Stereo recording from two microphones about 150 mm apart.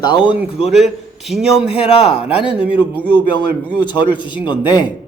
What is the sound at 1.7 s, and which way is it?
Speech, 40° left (ahead or behind).